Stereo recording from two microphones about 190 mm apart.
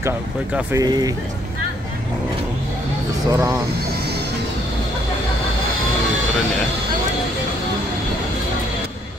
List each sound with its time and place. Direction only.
0.6 s speech: 15° right (ahead or behind)
3.3 s speech: 15° right (ahead or behind)